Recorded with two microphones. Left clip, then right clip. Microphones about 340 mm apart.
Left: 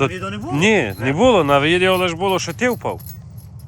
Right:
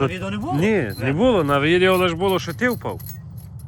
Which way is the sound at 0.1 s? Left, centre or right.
Right.